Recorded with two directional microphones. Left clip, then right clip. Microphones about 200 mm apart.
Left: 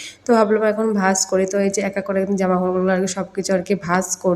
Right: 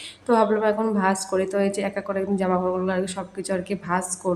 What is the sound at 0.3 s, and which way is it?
A woman's voice, 15° left (ahead or behind).